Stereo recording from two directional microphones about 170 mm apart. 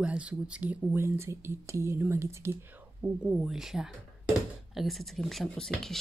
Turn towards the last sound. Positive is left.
turn(degrees=5)  # may be behind; listen again after turning